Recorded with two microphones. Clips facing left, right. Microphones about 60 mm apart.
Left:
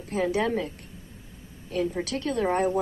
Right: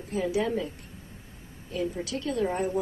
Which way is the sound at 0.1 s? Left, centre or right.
Left.